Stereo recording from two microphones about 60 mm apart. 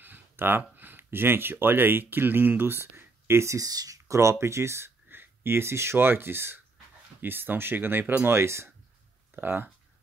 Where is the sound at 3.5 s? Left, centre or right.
Right.